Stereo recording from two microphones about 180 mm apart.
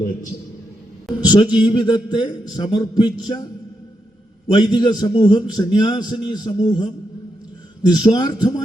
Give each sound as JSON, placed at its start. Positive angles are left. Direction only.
{"t": 1.3, "sound": "a man's voice", "side_deg": 25}
{"t": 4.5, "sound": "a man's voice", "side_deg": 25}
{"t": 7.9, "sound": "a man's voice", "side_deg": 25}